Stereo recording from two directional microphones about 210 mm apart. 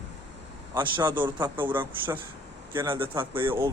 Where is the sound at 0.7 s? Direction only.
20° right (ahead or behind).